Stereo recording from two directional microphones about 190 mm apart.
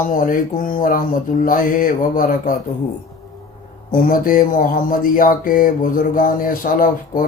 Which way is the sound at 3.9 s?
45° left (ahead or behind).